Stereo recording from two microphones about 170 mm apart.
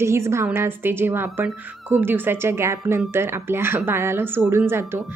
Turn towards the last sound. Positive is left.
turn(degrees=-15)  # may be behind; listen again after turning